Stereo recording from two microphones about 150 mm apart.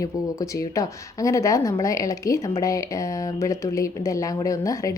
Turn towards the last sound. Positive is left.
turn(degrees=20)  # may be behind; listen again after turning